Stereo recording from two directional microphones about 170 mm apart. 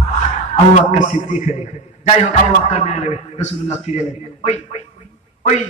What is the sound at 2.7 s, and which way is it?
A man's voice, 40° left (ahead or behind).